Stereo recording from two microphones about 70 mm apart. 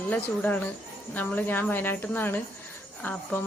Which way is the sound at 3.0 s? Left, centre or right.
Centre.